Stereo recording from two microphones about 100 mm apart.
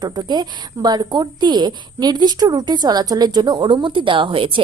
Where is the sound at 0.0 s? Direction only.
45° right (ahead or behind).